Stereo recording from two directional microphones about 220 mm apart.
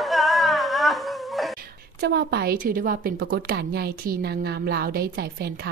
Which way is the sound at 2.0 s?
50° right (ahead or behind).